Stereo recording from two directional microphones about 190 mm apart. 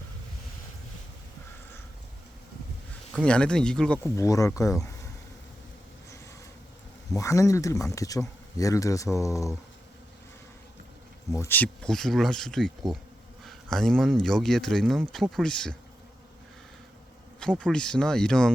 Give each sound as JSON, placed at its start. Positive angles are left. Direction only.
{"t": 3.1, "sound": "speech", "side_deg": 5}
{"t": 4.1, "sound": "speech", "side_deg": 15}
{"t": 7.1, "sound": "speech", "side_deg": 15}
{"t": 11.3, "sound": "speech", "side_deg": 10}
{"t": 17.4, "sound": "speech", "side_deg": 5}